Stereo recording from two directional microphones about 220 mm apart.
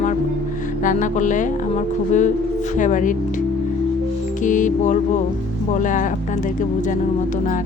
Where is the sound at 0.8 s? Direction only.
35° left (ahead or behind).